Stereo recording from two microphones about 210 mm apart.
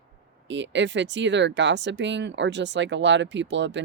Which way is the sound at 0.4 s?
60° right (ahead or behind).